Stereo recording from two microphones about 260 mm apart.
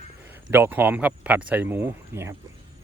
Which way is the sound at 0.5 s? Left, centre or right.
Centre.